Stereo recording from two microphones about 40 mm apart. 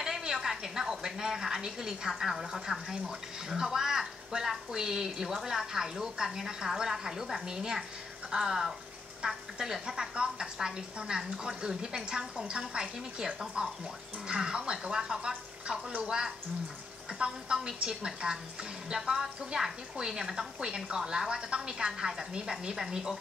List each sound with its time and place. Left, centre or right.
0.2 s a woman's voice: centre
17.2 s a woman's voice: centre